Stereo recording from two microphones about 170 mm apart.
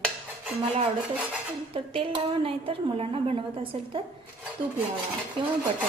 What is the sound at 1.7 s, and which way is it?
A woman's voice, 30° right (ahead or behind).